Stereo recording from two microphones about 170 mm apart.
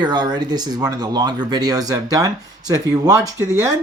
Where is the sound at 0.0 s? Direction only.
25° right (ahead or behind).